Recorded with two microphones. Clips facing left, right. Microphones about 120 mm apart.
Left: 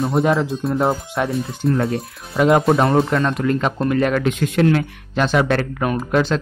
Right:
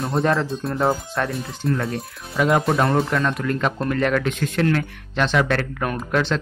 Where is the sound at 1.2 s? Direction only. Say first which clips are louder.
Left 4 dB; 10° left (ahead or behind).